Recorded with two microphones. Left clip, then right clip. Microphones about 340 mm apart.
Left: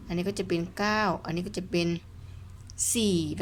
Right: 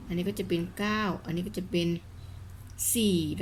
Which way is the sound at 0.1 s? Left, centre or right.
Centre.